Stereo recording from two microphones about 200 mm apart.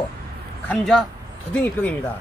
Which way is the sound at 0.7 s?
5° left (ahead or behind).